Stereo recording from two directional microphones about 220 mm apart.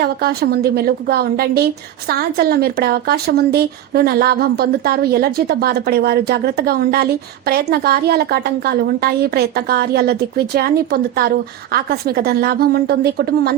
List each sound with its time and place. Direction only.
0.0 s a woman's voice: 45° right (ahead or behind)